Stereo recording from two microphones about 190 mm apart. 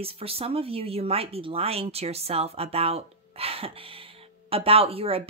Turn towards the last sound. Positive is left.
turn(degrees=-30)  # may be behind; listen again after turning